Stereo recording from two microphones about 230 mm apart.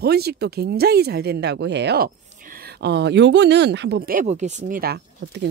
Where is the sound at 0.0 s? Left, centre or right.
Right.